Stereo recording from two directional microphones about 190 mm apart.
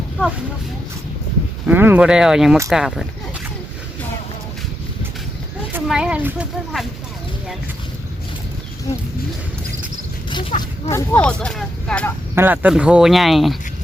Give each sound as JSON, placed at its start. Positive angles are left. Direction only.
{"t": 1.6, "sound": "speech", "side_deg": -10}
{"t": 5.7, "sound": "speech", "side_deg": -5}
{"t": 10.2, "sound": "speech", "side_deg": 25}
{"t": 10.9, "sound": "speech", "side_deg": 10}
{"t": 12.3, "sound": "speech", "side_deg": -10}